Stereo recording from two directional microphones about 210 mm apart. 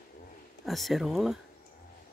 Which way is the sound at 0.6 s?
Centre (ahead or behind).